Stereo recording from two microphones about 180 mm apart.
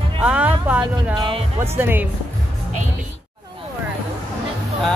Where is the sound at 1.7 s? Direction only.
10° right (ahead or behind).